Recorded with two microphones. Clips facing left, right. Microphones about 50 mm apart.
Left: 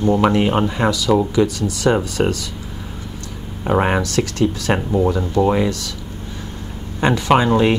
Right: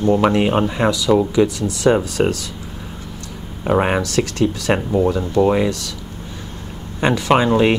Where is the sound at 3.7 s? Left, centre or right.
Right.